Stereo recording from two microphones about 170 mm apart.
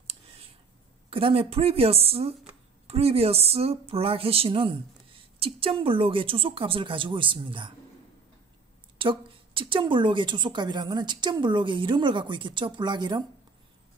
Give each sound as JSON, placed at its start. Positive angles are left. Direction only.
{"t": 0.0, "sound": "clicking", "side_deg": -35}
{"t": 1.1, "sound": "a woman's voice", "side_deg": -35}
{"t": 8.9, "sound": "a woman's voice", "side_deg": -30}